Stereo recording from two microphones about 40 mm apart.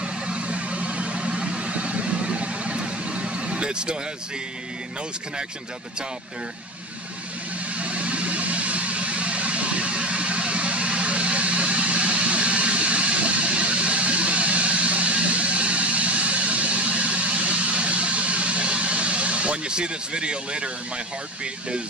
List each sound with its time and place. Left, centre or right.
0.0 s vehicle: right
7.7 s vehicle: right